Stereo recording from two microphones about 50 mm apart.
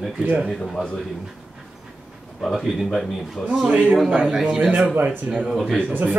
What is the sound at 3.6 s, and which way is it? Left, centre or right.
Speech, right.